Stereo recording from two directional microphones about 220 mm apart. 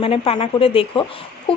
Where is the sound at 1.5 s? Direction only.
25° left (ahead or behind).